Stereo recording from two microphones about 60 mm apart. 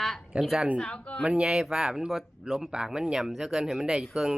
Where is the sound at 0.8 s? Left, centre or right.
Left.